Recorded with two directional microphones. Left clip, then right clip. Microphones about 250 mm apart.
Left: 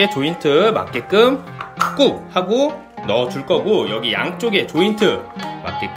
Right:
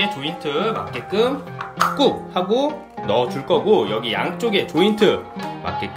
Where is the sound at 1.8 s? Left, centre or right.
Centre.